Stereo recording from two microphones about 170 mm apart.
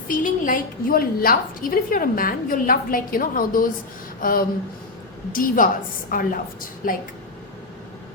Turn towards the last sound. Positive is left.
turn(degrees=55)  # may be behind; listen again after turning